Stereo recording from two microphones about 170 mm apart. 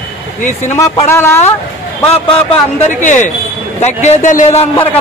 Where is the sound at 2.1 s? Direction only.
40° left (ahead or behind).